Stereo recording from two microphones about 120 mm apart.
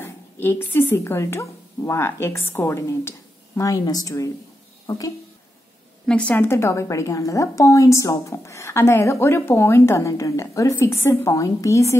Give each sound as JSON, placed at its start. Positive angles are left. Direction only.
{"t": 0.0, "sound": "speech", "side_deg": 20}
{"t": 6.0, "sound": "a woman's voice", "side_deg": 10}